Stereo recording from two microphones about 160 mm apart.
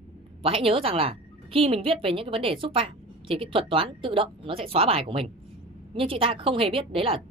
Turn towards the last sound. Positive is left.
turn(degrees=-35)  # may be behind; listen again after turning